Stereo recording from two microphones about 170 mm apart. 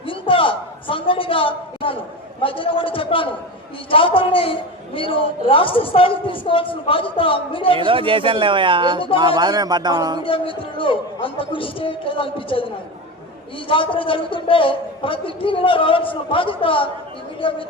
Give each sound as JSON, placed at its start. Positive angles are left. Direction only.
{"t": 0.0, "sound": "a sound", "side_deg": 30}
{"t": 2.4, "sound": "a man's voice", "side_deg": 30}
{"t": 7.8, "sound": "speech", "side_deg": -30}
{"t": 10.2, "sound": "a man's voice", "side_deg": 30}